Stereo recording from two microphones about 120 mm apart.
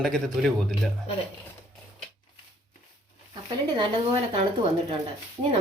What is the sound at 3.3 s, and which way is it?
Speech, 40° right (ahead or behind).